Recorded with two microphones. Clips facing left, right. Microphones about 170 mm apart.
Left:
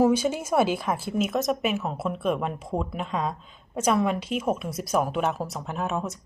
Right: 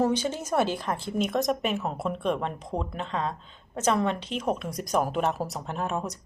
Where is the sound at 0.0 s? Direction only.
10° left (ahead or behind).